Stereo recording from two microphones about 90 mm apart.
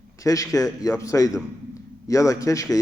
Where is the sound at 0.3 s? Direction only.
40° left (ahead or behind).